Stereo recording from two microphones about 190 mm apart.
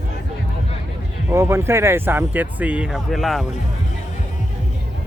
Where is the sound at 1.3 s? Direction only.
15° right (ahead or behind).